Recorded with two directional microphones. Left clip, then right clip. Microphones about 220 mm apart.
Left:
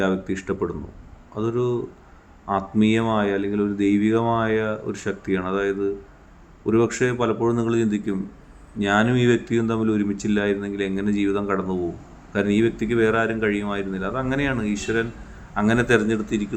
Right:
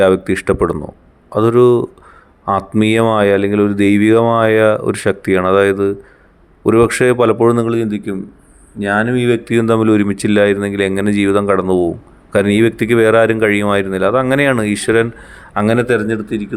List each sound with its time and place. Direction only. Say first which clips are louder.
0.0 s a man's voice: right 13 dB; 50° right (ahead or behind); by 9.5 s 25° right (ahead or behind)
9.5 s speech: right 11 dB; 40° right (ahead or behind)
15.5 s a man's voice: right 6 dB; 35° right (ahead or behind)